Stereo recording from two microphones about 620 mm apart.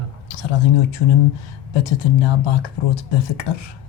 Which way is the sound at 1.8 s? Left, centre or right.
Left.